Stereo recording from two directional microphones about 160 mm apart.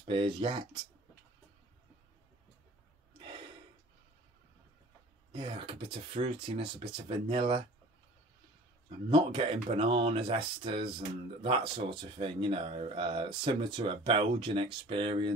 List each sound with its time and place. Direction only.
0.0 s speech: 35° right (ahead or behind)
5.3 s speech: 35° right (ahead or behind)
9.1 s speech: 35° right (ahead or behind)